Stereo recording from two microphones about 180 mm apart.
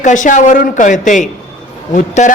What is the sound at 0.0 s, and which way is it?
Speech, 45° left (ahead or behind).